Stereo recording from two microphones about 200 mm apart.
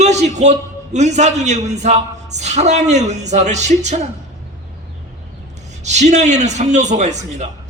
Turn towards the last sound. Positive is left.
turn(degrees=-35)  # may be behind; listen again after turning